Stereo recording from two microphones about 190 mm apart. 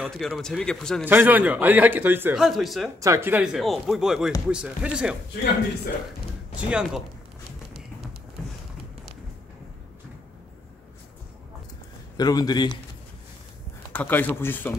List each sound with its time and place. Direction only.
0.0 s speech: centre (ahead or behind)
1.0 s a man's voice: 10° right (ahead or behind)
2.4 s speech: centre (ahead or behind)
3.0 s speech: 15° right (ahead or behind)
6.7 s speech: 5° right (ahead or behind)
12.2 s a man's voice: 20° left (ahead or behind)
13.9 s speech: 10° left (ahead or behind)